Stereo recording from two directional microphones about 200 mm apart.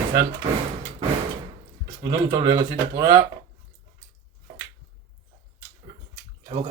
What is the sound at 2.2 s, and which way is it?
Speech, 15° right (ahead or behind).